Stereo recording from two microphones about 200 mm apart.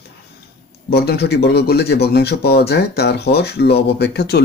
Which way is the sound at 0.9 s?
55° left (ahead or behind).